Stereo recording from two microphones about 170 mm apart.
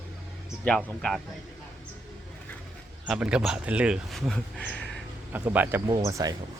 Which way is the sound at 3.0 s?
5° right (ahead or behind).